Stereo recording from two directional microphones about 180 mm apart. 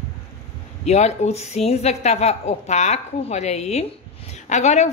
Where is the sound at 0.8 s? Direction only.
40° left (ahead or behind).